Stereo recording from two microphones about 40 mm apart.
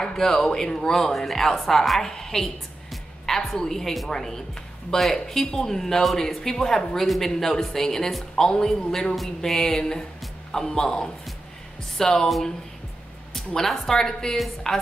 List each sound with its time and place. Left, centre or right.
0.0 s speech: centre
2.9 s music: centre
4.1 s speech: centre
13.6 s speech: centre